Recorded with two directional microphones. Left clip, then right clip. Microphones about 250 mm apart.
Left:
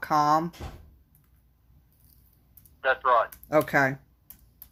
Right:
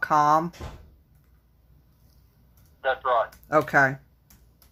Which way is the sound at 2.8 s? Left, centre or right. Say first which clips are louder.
Left 1 dB; left.